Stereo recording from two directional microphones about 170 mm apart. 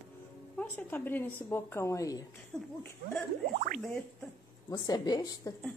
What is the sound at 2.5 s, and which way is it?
Speech, 5° left (ahead or behind).